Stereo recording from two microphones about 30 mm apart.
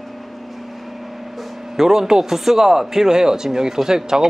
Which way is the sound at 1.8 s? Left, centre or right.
Centre.